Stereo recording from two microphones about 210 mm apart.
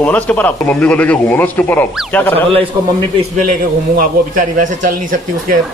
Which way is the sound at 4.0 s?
40° right (ahead or behind).